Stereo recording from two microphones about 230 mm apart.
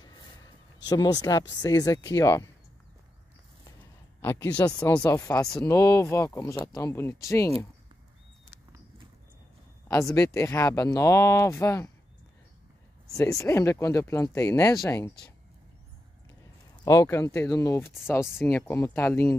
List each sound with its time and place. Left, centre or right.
0.7 s speech: centre
4.2 s speech: centre
9.8 s speech: centre
13.1 s speech: centre
16.8 s speech: centre